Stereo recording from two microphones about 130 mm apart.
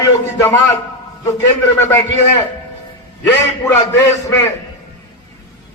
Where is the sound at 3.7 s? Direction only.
25° left (ahead or behind).